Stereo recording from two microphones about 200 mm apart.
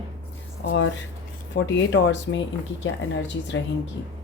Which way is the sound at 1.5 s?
65° left (ahead or behind).